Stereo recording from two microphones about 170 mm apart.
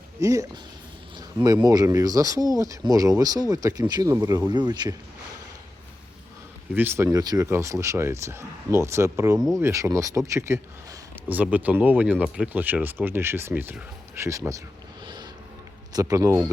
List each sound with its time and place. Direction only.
0.2 s speech: 20° right (ahead or behind)
1.6 s speech: 20° right (ahead or behind)
6.7 s speech: 15° right (ahead or behind)
15.9 s speech: 20° right (ahead or behind)